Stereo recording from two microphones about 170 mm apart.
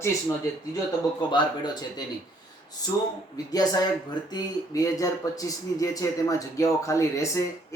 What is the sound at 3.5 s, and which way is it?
Speech, 20° left (ahead or behind).